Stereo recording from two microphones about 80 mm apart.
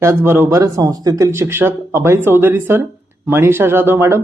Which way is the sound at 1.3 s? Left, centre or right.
Right.